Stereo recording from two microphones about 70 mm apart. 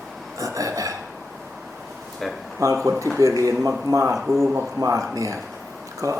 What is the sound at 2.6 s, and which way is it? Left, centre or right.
Speech, right.